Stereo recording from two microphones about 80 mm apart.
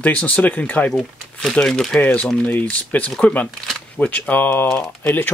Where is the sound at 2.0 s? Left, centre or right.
Left.